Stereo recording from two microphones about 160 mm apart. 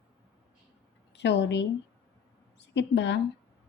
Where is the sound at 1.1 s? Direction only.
90° left.